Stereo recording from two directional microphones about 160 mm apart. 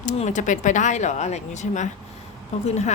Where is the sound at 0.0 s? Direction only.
50° left (ahead or behind).